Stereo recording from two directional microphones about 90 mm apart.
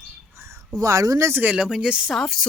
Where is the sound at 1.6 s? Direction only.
5° right (ahead or behind).